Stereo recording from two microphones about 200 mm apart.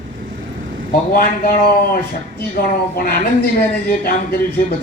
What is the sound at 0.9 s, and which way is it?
Speech, 50° left (ahead or behind).